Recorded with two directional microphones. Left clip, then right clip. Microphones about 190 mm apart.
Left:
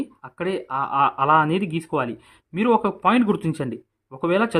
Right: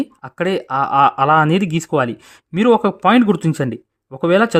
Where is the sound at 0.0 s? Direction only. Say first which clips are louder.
Right 7 dB; 50° right (ahead or behind).